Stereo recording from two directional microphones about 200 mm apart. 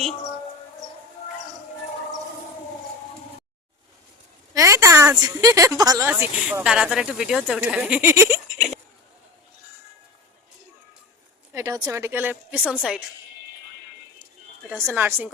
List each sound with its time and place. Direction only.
4.5 s a woman's voice: 15° right (ahead or behind)
6.1 s speech: 10° right (ahead or behind)
11.5 s a woman's voice: 15° right (ahead or behind)
14.8 s a woman's voice: 10° right (ahead or behind)